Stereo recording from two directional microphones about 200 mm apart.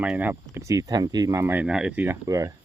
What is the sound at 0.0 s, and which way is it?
Speech, 5° right (ahead or behind).